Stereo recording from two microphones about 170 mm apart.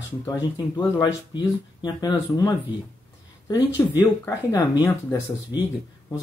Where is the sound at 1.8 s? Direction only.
20° left (ahead or behind).